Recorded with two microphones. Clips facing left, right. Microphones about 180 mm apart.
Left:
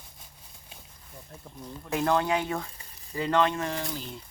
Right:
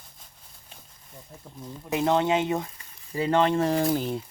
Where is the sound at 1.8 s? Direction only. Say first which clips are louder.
Right 3 dB; 20° right (ahead or behind).